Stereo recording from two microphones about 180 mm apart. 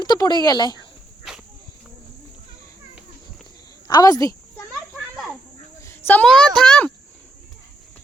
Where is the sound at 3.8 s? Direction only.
20° left (ahead or behind).